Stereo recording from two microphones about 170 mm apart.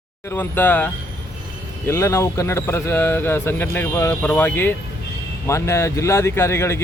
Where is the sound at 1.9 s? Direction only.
15° left (ahead or behind).